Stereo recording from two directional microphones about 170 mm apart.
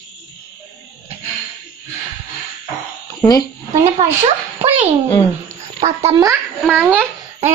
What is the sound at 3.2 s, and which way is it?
Speech, 25° left (ahead or behind).